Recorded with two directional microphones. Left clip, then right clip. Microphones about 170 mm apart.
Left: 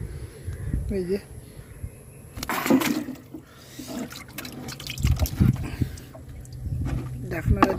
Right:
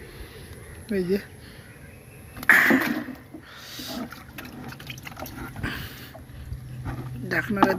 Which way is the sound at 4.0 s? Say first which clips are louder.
Left 1 dB; 40° left (ahead or behind).